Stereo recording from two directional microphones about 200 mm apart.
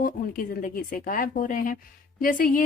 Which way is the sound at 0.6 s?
45° left (ahead or behind).